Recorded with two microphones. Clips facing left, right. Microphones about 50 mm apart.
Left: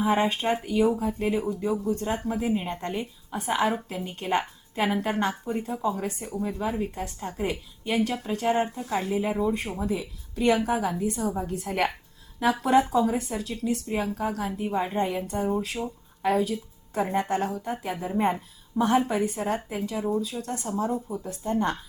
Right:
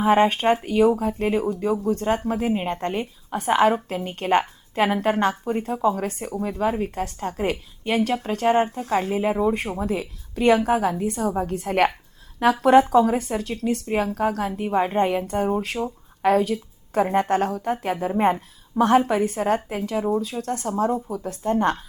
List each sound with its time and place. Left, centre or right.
0.0 s a woman's voice: right
1.8 s speech: right
2.2 s a woman's voice: right
9.8 s a woman's voice: right
21.1 s speech: right
21.5 s speech: right